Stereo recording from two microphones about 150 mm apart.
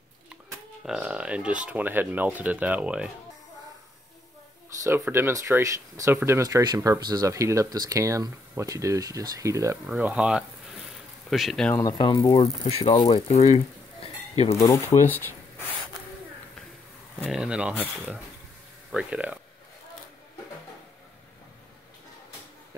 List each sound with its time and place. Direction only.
0.8 s speech: 5° right (ahead or behind)
5.1 s speech: 20° right (ahead or behind)
9.8 s speech: 10° right (ahead or behind)
11.7 s speech: 25° left (ahead or behind)
12.4 s speech: 40° left (ahead or behind)
14.5 s speech: 20° left (ahead or behind)
17.2 s speech: 5° right (ahead or behind)